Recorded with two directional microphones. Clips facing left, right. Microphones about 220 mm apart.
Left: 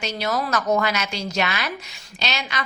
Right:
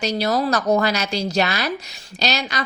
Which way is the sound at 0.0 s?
35° right (ahead or behind).